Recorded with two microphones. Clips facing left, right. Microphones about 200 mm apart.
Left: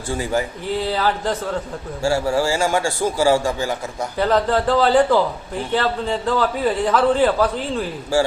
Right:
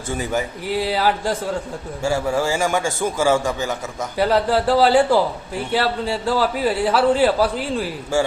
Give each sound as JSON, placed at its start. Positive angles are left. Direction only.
{"t": 0.1, "sound": "a man's voice", "side_deg": -20}
{"t": 4.2, "sound": "a man's voice", "side_deg": -10}